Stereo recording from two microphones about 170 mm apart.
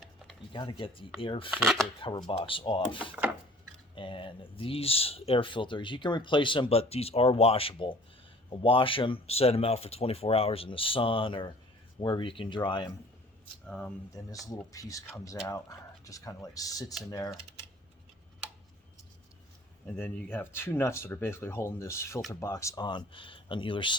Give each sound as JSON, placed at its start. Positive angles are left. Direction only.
{"t": 0.5, "sound": "speech", "side_deg": 30}
{"t": 1.5, "sound": "speech", "side_deg": 0}
{"t": 2.0, "sound": "speech", "side_deg": 30}
{"t": 3.9, "sound": "speech", "side_deg": 30}
{"t": 13.7, "sound": "speech", "side_deg": 5}
{"t": 14.3, "sound": "speech", "side_deg": 20}
{"t": 20.0, "sound": "speech", "side_deg": 10}